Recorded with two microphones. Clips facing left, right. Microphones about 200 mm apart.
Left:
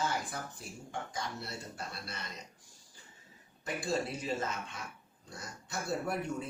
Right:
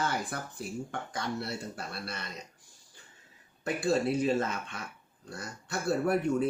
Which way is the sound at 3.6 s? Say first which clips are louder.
Right 7 dB; 65° right (ahead or behind).